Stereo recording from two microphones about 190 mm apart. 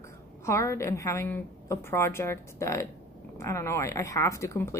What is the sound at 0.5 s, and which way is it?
A woman's voice, 15° left (ahead or behind).